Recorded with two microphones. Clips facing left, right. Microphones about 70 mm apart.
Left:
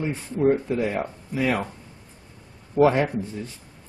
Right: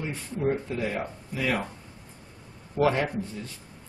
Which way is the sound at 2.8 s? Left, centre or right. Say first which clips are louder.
Left 5 dB; centre.